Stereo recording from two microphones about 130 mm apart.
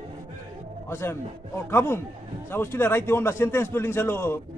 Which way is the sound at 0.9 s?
20° left (ahead or behind).